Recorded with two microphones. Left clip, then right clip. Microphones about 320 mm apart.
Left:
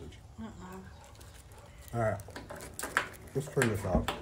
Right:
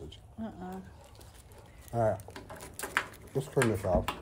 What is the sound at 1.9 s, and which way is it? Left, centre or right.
Speech, centre.